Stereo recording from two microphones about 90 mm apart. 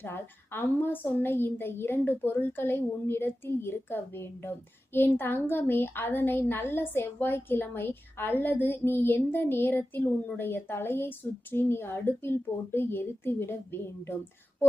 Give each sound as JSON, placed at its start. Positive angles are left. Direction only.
{"t": 0.0, "sound": "a woman's voice", "side_deg": 25}